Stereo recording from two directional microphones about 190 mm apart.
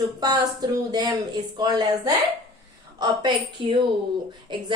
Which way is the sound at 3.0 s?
25° right (ahead or behind).